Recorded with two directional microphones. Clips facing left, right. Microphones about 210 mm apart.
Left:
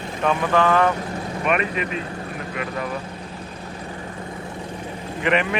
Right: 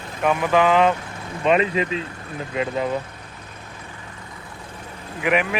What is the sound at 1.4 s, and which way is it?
Speech, 25° right (ahead or behind).